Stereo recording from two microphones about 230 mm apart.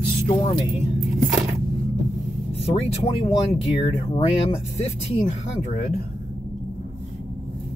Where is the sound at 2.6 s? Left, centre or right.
Left.